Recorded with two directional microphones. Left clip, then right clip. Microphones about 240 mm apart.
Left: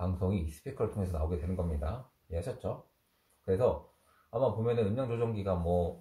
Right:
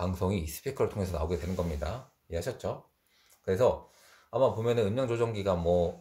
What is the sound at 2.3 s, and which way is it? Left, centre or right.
Speech, right.